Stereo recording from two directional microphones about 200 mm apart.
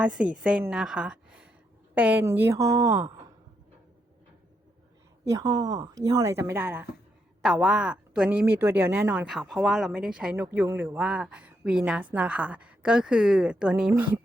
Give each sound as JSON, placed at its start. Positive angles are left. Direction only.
{"t": 0.0, "sound": "a woman's voice", "side_deg": -5}
{"t": 5.3, "sound": "a woman's voice", "side_deg": -15}